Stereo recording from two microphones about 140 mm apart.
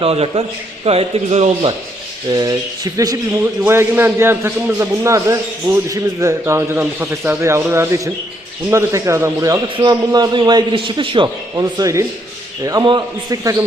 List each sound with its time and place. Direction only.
0.0 s a man's voice: 45° right (ahead or behind)
2.3 s a man's voice: 25° right (ahead or behind)
3.4 s a man's voice: 15° right (ahead or behind)